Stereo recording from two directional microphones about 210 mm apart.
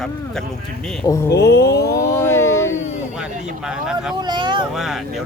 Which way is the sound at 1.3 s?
50° left (ahead or behind).